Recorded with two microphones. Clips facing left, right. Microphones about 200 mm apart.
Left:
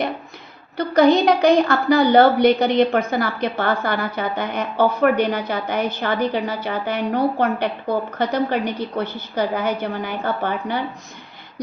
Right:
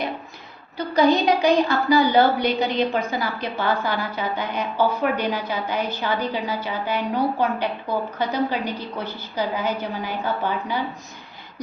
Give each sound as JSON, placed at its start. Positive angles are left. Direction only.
{"t": 0.8, "sound": "a woman's voice", "side_deg": 50}